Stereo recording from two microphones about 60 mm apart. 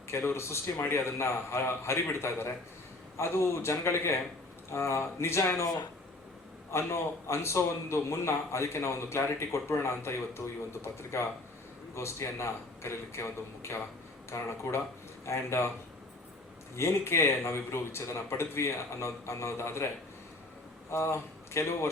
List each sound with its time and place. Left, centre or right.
0.1 s a man's voice: left
5.5 s speech: left
6.7 s a man's voice: left
16.7 s a man's voice: left
20.9 s a man's voice: left